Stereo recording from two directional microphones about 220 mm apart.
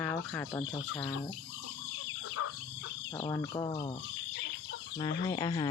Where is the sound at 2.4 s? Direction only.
85° left.